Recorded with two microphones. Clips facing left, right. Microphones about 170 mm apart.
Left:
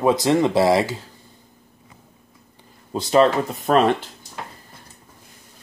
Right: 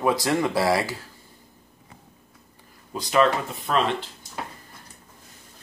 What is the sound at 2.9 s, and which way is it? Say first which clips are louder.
Speech: left 5 dB; 30° left (ahead or behind).